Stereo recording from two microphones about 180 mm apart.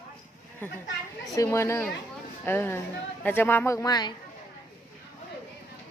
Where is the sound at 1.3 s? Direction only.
15° left (ahead or behind).